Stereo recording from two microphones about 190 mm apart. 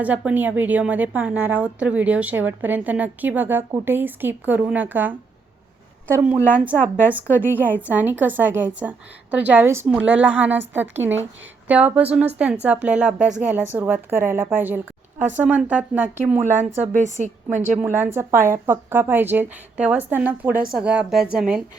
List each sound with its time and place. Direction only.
0.0 s a woman's voice: 10° right (ahead or behind)
16.5 s a woman's voice: 35° right (ahead or behind)
17.7 s a woman's voice: 10° right (ahead or behind)